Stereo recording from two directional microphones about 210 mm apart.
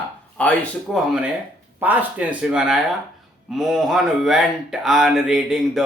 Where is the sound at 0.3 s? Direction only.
5° left (ahead or behind).